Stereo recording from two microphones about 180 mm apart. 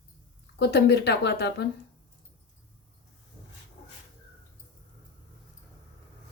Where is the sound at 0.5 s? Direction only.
65° left (ahead or behind).